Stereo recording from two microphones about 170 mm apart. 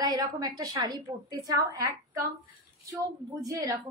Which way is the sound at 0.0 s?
25° right (ahead or behind).